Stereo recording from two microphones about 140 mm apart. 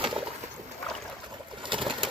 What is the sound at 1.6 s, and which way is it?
Pigeon, 35° right (ahead or behind).